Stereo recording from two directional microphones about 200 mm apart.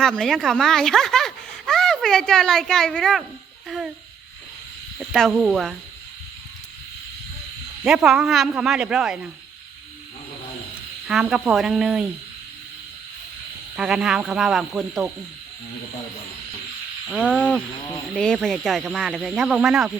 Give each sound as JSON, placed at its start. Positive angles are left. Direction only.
{"t": 0.0, "sound": "speech", "side_deg": 5}
{"t": 3.7, "sound": "owl", "side_deg": 0}
{"t": 4.9, "sound": "speech", "side_deg": 0}
{"t": 7.9, "sound": "speech", "side_deg": 0}
{"t": 11.1, "sound": "speech", "side_deg": -5}
{"t": 13.7, "sound": "speech", "side_deg": -5}
{"t": 17.1, "sound": "speech", "side_deg": 5}